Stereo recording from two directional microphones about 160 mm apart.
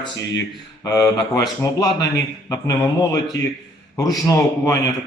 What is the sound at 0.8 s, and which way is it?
A man's voice, 25° left (ahead or behind).